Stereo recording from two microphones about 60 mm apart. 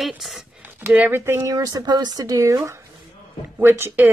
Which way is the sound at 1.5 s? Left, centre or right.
Right.